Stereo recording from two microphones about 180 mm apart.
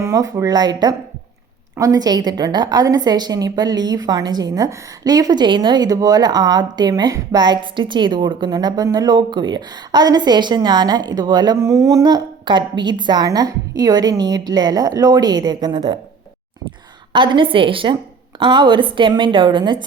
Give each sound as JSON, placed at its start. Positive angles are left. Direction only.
{"t": 0.0, "sound": "a woman's voice", "side_deg": -20}
{"t": 17.1, "sound": "a woman's voice", "side_deg": -25}